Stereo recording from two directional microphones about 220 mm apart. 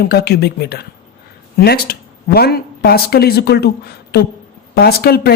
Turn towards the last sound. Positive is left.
turn(degrees=45)  # may be behind; listen again after turning